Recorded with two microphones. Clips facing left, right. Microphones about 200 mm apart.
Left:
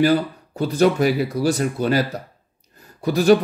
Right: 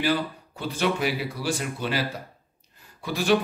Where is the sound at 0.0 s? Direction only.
40° left (ahead or behind).